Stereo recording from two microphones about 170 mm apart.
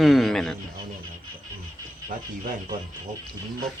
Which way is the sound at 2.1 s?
50° right (ahead or behind).